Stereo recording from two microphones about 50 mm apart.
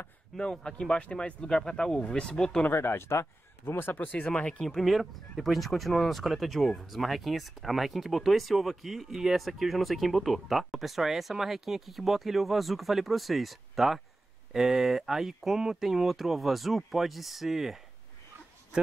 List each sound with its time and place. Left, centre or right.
0.4 s speech: centre
2.7 s speech: left
4.6 s speech: centre